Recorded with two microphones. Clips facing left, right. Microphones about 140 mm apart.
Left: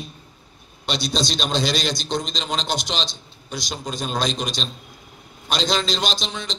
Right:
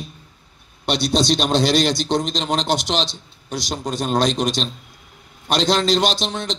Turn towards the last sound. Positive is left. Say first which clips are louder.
# right 5 dB
turn(degrees=-70)  # may be behind; listen again after turning